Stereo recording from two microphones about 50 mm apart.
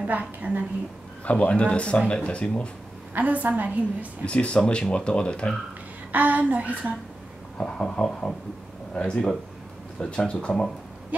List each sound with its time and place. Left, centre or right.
0.0 s a woman's voice: right
1.2 s speech: left
3.2 s a woman's voice: right
4.2 s speech: left
6.1 s a woman's voice: right
7.5 s speech: centre
8.9 s speech: left